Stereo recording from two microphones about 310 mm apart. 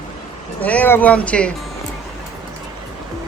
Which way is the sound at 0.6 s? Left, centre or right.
Centre.